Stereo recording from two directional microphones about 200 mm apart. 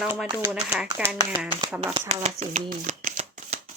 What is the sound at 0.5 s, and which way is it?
Speech, 5° right (ahead or behind).